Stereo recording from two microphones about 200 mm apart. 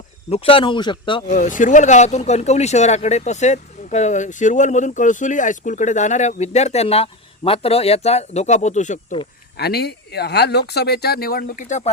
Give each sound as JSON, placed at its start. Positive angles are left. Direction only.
{"t": 0.3, "sound": "a man's voice", "side_deg": 30}
{"t": 1.3, "sound": "speech", "side_deg": 40}
{"t": 9.6, "sound": "speech", "side_deg": 55}